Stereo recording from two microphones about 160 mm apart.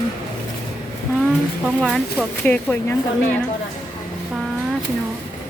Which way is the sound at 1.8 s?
5° left (ahead or behind).